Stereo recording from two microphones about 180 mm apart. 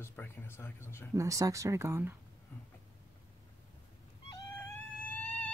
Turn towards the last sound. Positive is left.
turn(degrees=10)  # may be behind; listen again after turning